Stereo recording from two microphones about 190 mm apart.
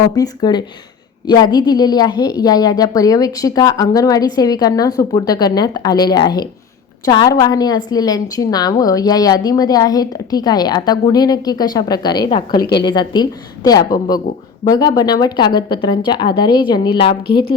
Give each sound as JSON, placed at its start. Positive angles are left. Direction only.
{"t": 0.2, "sound": "a woman's voice", "side_deg": 20}
{"t": 17.2, "sound": "a woman's voice", "side_deg": 55}